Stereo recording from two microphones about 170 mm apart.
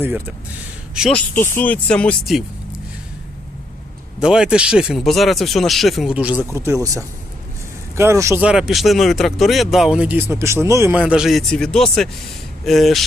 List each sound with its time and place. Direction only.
0.0 s speech: 10° right (ahead or behind)
1.1 s speech: 10° left (ahead or behind)
4.2 s speech: 5° right (ahead or behind)
8.4 s speech: 5° right (ahead or behind)